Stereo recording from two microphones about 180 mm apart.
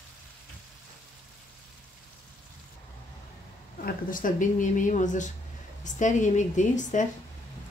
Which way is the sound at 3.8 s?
50° left (ahead or behind).